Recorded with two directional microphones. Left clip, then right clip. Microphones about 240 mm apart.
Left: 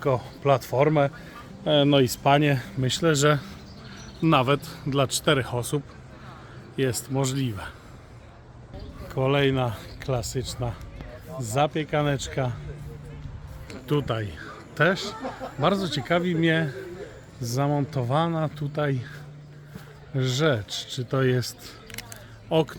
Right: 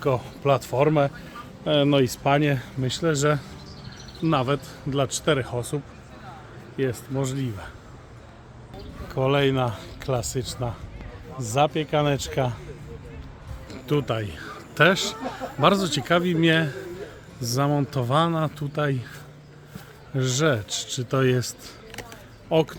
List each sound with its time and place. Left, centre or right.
0.0 s speech: centre; by 5.8 s left
6.7 s speech: left
9.0 s speech: centre
13.8 s speech: centre
20.1 s speech: centre